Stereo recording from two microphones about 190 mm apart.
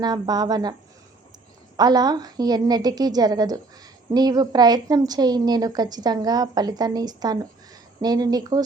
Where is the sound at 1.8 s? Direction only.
20° right (ahead or behind).